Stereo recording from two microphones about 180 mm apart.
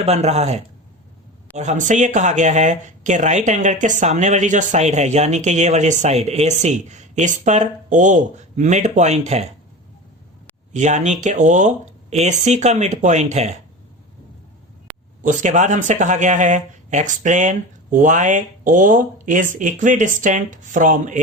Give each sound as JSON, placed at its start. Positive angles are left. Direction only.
{"t": 0.0, "sound": "speech", "side_deg": -35}
{"t": 10.7, "sound": "speech", "side_deg": -40}
{"t": 15.2, "sound": "speech", "side_deg": -45}